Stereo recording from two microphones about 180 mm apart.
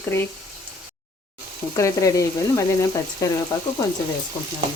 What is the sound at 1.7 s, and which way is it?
Speech, 15° left (ahead or behind).